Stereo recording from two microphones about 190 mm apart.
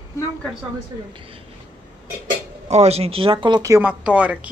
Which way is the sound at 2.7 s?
35° right (ahead or behind).